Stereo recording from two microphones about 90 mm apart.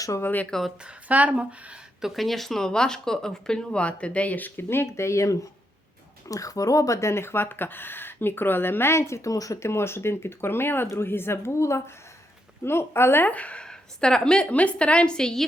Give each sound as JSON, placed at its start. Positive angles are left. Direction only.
{"t": 0.2, "sound": "speech", "side_deg": 20}
{"t": 0.9, "sound": "speech", "side_deg": -15}
{"t": 2.0, "sound": "speech", "side_deg": 0}